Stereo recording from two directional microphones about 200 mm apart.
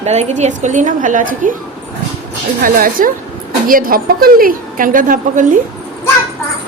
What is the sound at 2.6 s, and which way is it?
A woman's voice, 45° right (ahead or behind).